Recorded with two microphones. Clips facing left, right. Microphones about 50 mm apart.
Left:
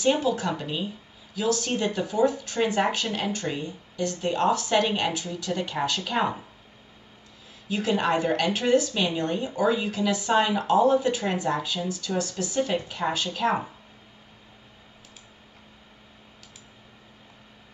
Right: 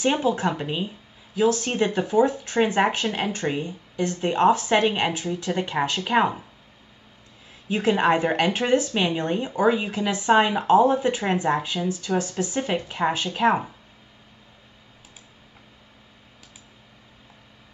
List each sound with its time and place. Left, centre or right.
0.0 s speech: right
7.6 s speech: right